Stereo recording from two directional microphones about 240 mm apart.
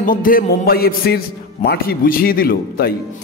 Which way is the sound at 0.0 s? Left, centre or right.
Left.